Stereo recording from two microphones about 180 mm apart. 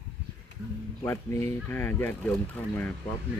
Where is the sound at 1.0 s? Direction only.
15° left (ahead or behind).